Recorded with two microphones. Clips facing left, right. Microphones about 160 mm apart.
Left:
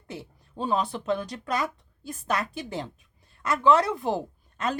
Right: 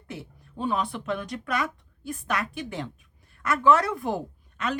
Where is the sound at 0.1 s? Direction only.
35° left (ahead or behind).